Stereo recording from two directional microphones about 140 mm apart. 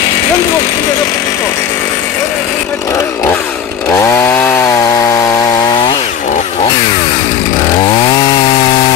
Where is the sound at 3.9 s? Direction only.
20° left (ahead or behind).